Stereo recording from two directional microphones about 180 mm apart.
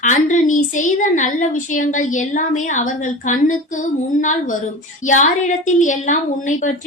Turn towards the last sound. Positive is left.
turn(degrees=45)  # may be behind; listen again after turning